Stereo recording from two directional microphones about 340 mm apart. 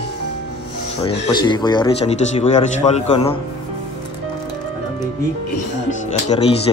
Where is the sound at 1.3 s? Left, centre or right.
Centre.